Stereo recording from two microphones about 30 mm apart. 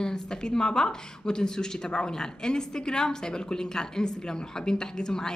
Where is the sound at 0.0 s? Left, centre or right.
Left.